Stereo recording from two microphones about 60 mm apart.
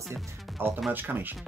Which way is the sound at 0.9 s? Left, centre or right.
Right.